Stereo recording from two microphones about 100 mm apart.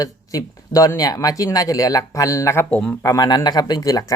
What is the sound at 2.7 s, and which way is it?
Speech, 10° left (ahead or behind).